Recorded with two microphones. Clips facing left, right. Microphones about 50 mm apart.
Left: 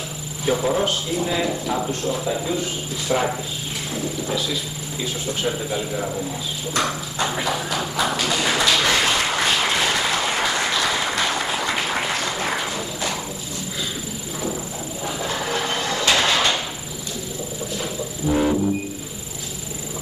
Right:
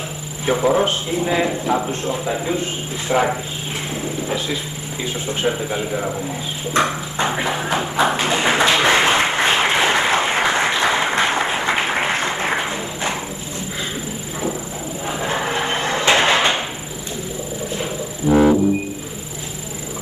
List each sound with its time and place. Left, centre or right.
0.5 s speech: right
6.7 s clip-clop: right
15.0 s a sound: right
18.3 s music: right